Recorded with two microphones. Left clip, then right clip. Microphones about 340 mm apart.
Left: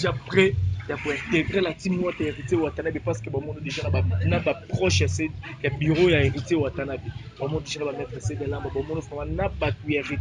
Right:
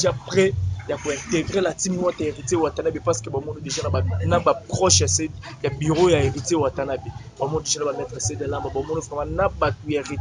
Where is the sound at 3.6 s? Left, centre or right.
Centre.